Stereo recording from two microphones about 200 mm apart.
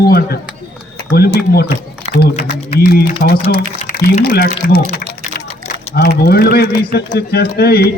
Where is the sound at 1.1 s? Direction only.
50° left (ahead or behind).